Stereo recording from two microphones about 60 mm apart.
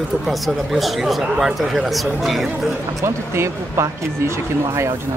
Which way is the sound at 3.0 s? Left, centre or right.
Right.